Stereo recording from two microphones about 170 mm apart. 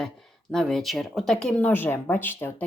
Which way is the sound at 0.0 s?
5° left (ahead or behind).